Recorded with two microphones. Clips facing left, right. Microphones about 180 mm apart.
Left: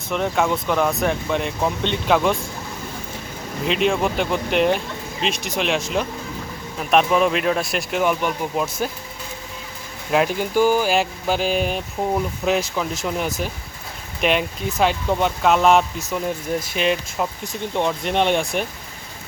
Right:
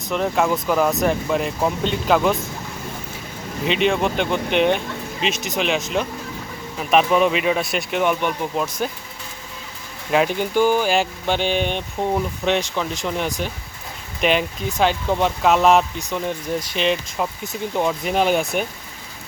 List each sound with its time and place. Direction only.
0.1 s speech: centre (ahead or behind)
3.7 s speech: centre (ahead or behind)
10.1 s speech: centre (ahead or behind)